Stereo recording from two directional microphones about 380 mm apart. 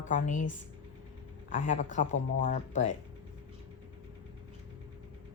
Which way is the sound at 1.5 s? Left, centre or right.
Left.